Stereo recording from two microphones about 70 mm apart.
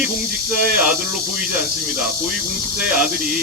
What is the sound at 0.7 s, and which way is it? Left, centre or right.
Speech, centre.